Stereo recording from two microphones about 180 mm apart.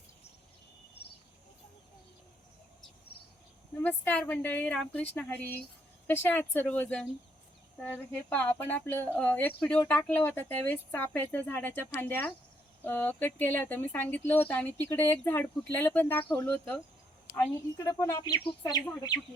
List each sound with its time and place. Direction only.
3.8 s a woman's voice: 10° left (ahead or behind)